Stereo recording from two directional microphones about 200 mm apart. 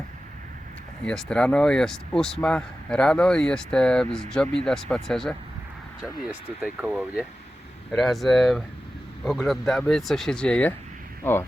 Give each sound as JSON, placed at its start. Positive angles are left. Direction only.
{"t": 1.0, "sound": "speech", "side_deg": 5}